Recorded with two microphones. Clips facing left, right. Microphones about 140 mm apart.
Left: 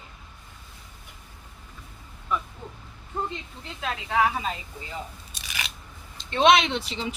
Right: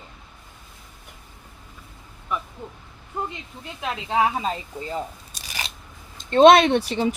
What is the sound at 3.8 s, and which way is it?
Speech, 25° right (ahead or behind).